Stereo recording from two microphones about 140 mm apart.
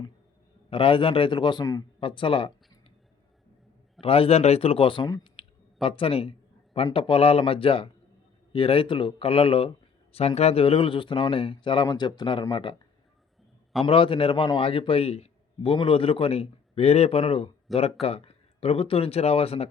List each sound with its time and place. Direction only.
0.7 s speech: 40° left (ahead or behind)
4.0 s speech: 40° left (ahead or behind)
5.4 s clicking: 40° left (ahead or behind)
6.9 s speech: 40° left (ahead or behind)
13.8 s speech: 40° left (ahead or behind)
17.7 s speech: centre (ahead or behind)
18.0 s speech: 45° left (ahead or behind)